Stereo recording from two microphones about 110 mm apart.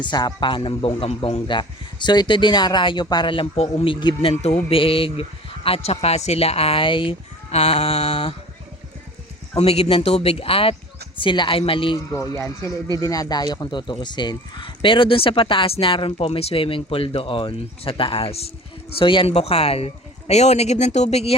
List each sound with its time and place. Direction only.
0.0 s speech: 40° left (ahead or behind); by 3.8 s 70° left (ahead or behind)
3.8 s speech: 55° left (ahead or behind)
7.5 s speech: 65° left (ahead or behind)
9.6 s speech: 70° left (ahead or behind)
11.2 s speech: 50° left (ahead or behind)
11.9 s speech: 30° left (ahead or behind); by 18.5 s 65° left (ahead or behind)
18.9 s speech: 50° left (ahead or behind); by 21.3 s 70° left (ahead or behind)